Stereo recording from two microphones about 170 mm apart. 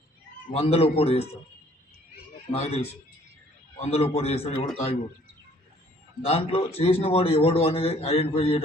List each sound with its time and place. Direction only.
0.5 s a man's voice: 35° left (ahead or behind)
2.5 s a man's voice: 35° left (ahead or behind)
6.2 s a man's voice: 35° left (ahead or behind)